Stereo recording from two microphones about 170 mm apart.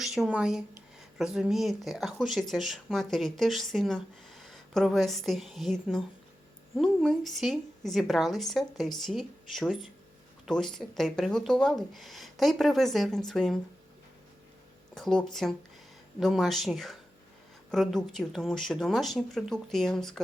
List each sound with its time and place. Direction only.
0.0 s speech: centre (ahead or behind)
14.9 s speech: centre (ahead or behind)